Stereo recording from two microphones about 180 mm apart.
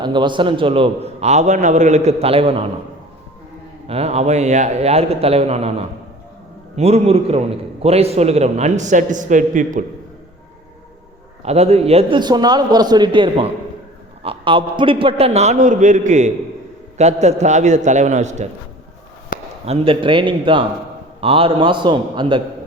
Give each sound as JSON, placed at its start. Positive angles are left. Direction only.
{"t": 0.0, "sound": "a man's voice", "side_deg": -25}
{"t": 3.8, "sound": "a man's voice", "side_deg": -35}
{"t": 6.7, "sound": "a man's voice", "side_deg": -35}
{"t": 11.4, "sound": "a man's voice", "side_deg": -35}
{"t": 19.3, "sound": "a sound", "side_deg": 50}
{"t": 19.6, "sound": "a man's voice", "side_deg": -35}